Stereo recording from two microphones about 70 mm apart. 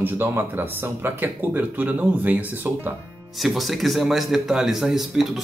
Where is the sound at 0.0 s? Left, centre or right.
Right.